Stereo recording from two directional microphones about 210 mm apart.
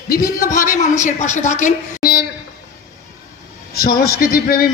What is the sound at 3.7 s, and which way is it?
Speech, 45° left (ahead or behind).